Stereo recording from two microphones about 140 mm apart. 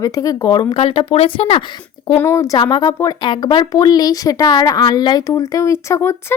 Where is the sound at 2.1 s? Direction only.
20° left (ahead or behind).